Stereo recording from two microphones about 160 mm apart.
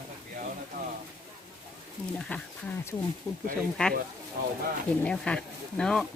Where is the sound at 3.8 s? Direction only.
5° left (ahead or behind).